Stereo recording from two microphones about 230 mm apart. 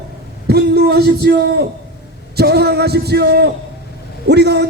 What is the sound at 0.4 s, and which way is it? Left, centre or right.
A man's voice, right.